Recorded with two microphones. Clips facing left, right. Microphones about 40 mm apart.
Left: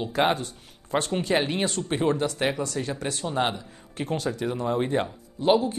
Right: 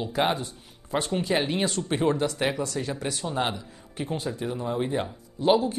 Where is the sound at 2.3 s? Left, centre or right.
Centre.